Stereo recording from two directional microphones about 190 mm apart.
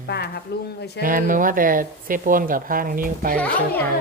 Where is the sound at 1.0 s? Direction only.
45° right (ahead or behind).